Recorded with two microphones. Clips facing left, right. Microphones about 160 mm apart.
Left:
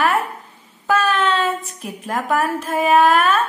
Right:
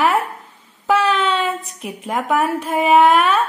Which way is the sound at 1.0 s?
10° right (ahead or behind).